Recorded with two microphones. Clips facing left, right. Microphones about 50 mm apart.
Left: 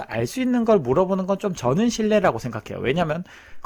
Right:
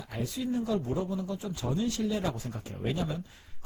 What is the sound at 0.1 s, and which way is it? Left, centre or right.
Speech, left.